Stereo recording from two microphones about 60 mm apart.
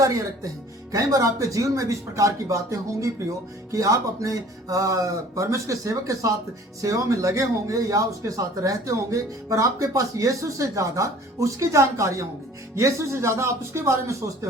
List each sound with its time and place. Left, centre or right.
0.0 s speech: right